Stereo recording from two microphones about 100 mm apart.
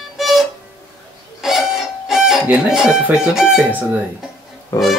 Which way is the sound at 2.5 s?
5° right (ahead or behind).